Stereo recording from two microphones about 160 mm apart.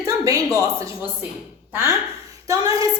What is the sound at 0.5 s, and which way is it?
A woman's voice, 20° right (ahead or behind).